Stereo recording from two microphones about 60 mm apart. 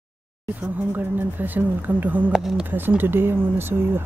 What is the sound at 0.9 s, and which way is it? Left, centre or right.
Speech, right.